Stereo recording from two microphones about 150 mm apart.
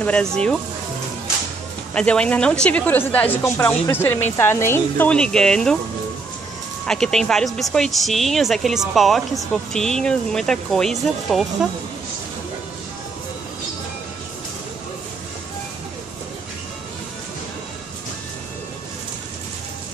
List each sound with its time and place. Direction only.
0.0 s speech: 5° left (ahead or behind)
2.0 s a woman's voice: 5° left (ahead or behind)
6.9 s speech: 5° left (ahead or behind)